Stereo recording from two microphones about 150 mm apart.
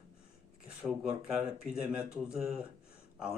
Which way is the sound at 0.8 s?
10° right (ahead or behind).